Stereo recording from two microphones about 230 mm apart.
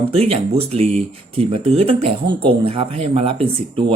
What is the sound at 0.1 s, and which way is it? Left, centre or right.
Speech, right.